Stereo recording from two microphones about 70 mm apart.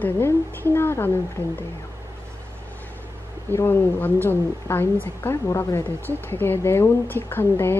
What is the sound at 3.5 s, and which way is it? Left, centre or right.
A woman's voice, left.